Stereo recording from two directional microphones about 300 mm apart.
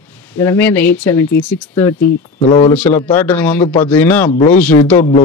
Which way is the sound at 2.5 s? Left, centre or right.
Centre.